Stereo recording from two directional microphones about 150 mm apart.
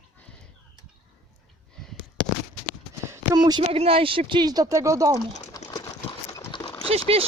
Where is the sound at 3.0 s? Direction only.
20° right (ahead or behind).